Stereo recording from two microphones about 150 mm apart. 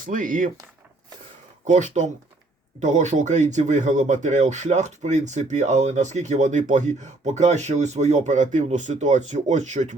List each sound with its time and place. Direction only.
0.0 s speech: 65° right (ahead or behind)
1.6 s speech: 50° right (ahead or behind)